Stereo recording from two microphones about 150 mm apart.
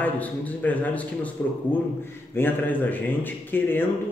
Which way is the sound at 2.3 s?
10° left (ahead or behind).